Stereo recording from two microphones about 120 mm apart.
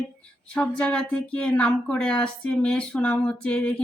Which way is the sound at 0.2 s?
10° left (ahead or behind).